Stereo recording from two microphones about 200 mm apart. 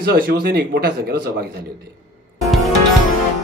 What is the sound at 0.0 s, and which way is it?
A man's voice, 50° right (ahead or behind).